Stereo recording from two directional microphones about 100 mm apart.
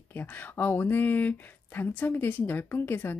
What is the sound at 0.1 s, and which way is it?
Speech, 20° left (ahead or behind).